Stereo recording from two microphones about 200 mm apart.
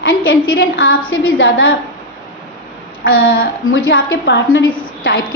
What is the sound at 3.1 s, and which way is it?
Speech, 85° left.